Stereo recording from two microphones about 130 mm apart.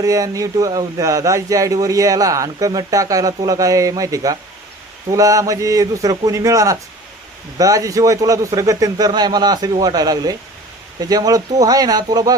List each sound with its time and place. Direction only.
0.0 s speech: 25° right (ahead or behind)